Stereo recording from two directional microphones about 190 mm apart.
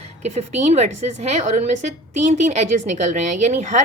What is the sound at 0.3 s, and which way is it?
A woman's voice, 35° right (ahead or behind).